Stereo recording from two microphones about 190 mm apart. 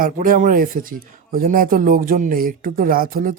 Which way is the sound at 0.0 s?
45° right (ahead or behind).